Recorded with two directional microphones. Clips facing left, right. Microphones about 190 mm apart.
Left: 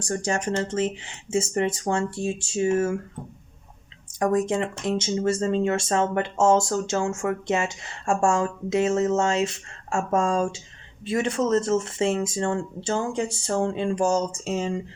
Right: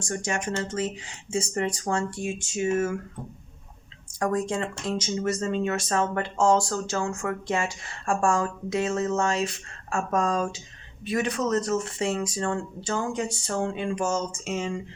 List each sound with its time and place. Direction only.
0.0 s speech: 30° left (ahead or behind)
4.2 s speech: 20° left (ahead or behind)